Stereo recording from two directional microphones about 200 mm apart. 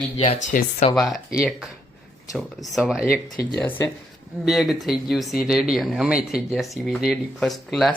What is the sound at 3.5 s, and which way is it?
Speech, 10° left (ahead or behind).